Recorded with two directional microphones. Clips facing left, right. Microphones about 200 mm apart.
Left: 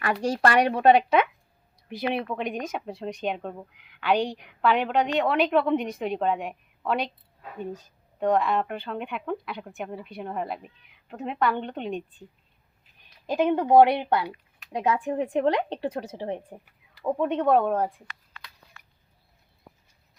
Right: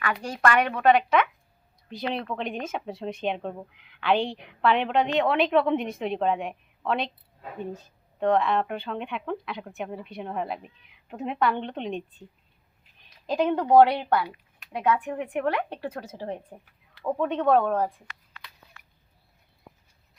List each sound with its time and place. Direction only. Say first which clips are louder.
0.0 s speech: left 2 dB; 40° left (ahead or behind)
2.0 s speech: left 2 dB; 10° left (ahead or behind)
8.2 s speech: even; 5° left (ahead or behind)
13.2 s a woman's voice: left 1 dB; 5° left (ahead or behind)